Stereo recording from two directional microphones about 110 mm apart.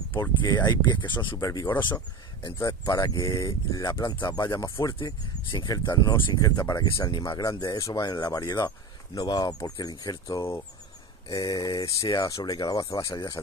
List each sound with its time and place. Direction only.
0.2 s speech: 40° left (ahead or behind)
1.3 s speech: 30° left (ahead or behind)
4.9 s speech: 50° left (ahead or behind)
5.7 s speech: 35° left (ahead or behind)